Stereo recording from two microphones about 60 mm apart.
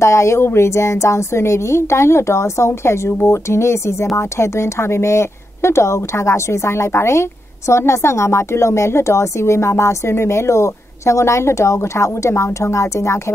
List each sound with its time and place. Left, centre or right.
0.0 s speech: left